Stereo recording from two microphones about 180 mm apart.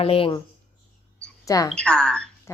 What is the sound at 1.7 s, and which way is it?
Speech, 5° left (ahead or behind).